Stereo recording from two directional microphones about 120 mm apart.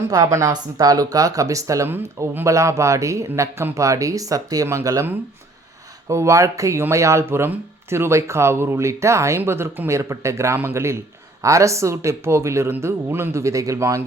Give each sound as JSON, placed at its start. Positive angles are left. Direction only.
{"t": 0.0, "sound": "speech", "side_deg": -25}
{"t": 6.1, "sound": "speech", "side_deg": -25}